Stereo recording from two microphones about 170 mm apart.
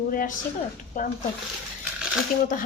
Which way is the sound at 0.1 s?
50° left (ahead or behind).